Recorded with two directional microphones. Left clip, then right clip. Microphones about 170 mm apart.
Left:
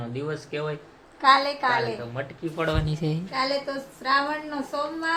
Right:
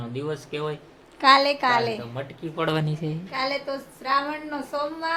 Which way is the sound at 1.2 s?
50° right (ahead or behind).